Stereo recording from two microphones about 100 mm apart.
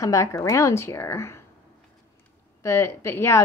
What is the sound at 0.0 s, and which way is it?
A woman's voice, 30° left (ahead or behind).